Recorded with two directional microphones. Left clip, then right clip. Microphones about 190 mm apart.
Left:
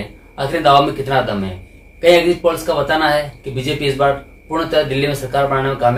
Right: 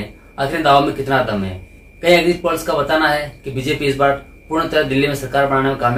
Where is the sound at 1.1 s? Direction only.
Centre (ahead or behind).